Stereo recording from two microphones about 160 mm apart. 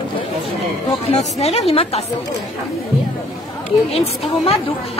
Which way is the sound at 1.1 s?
40° left (ahead or behind).